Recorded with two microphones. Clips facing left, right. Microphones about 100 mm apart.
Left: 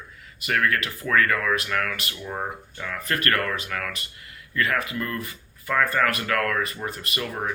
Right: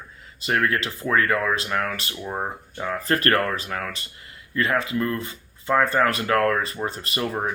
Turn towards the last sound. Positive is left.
turn(degrees=-30)  # may be behind; listen again after turning